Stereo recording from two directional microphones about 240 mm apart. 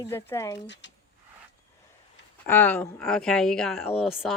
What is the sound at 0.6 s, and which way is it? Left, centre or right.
Speech, left.